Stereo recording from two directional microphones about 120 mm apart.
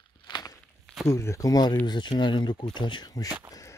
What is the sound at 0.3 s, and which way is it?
Walk, 30° left (ahead or behind).